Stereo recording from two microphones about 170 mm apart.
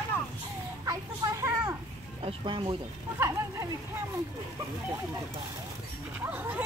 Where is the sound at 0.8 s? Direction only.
20° right (ahead or behind).